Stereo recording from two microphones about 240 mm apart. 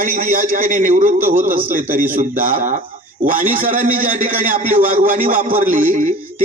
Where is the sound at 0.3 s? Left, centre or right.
Right.